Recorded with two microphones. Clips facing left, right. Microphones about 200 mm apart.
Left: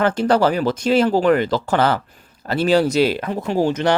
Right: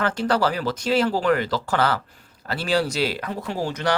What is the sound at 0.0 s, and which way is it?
Speech, 20° left (ahead or behind).